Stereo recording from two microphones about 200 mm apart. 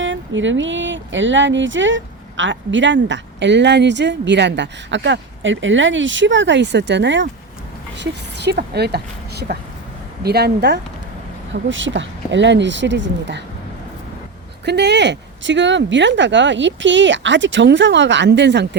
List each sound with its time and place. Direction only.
0.0 s a woman's voice: 70° right (ahead or behind)
11.5 s speech: 70° right (ahead or behind)
14.6 s speech: 60° right (ahead or behind)